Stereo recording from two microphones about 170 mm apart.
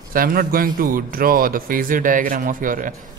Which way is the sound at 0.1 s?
55° right (ahead or behind).